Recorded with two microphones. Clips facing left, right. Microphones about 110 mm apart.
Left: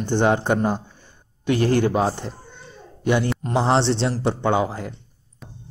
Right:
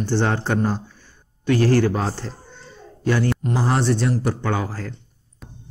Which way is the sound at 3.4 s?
25° left (ahead or behind).